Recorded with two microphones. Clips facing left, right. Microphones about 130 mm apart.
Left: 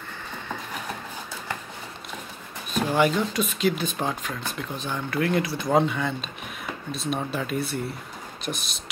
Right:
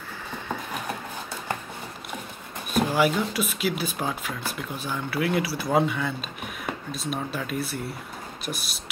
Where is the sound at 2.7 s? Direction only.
5° right (ahead or behind).